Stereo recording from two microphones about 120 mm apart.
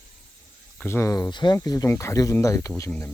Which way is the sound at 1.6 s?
25° left (ahead or behind).